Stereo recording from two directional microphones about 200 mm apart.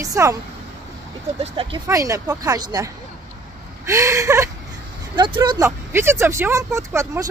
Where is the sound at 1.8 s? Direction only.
15° right (ahead or behind).